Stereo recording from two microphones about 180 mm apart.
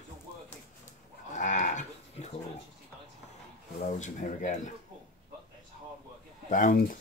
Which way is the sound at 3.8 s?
45° left (ahead or behind).